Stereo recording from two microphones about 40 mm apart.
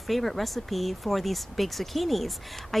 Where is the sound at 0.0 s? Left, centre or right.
Centre.